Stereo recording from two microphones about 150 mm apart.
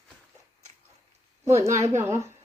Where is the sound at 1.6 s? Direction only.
20° right (ahead or behind).